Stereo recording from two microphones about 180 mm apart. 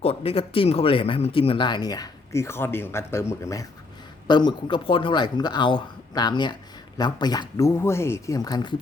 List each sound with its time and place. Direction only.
0.0 s speech: 35° left (ahead or behind)